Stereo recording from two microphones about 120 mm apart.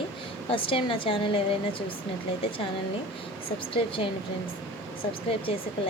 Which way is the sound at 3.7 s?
45° left (ahead or behind).